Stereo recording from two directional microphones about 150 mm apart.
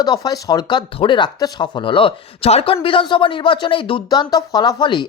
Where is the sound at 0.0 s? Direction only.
25° left (ahead or behind).